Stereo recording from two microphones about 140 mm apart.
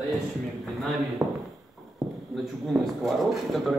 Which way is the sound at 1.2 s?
Centre (ahead or behind).